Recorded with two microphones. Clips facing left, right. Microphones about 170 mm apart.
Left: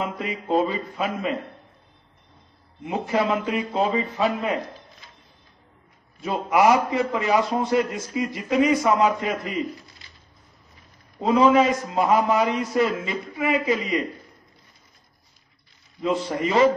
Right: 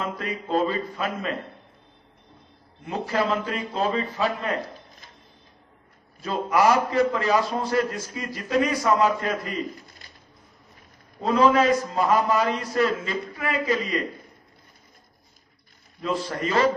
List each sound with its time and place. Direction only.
0.0 s a man's voice: 20° left (ahead or behind)
2.9 s a man's voice: 15° left (ahead or behind)
6.2 s a man's voice: 20° left (ahead or behind)
11.3 s a man's voice: 15° left (ahead or behind)
16.3 s a man's voice: 20° left (ahead or behind)